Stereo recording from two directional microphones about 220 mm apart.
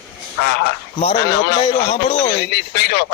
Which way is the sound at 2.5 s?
45° left (ahead or behind).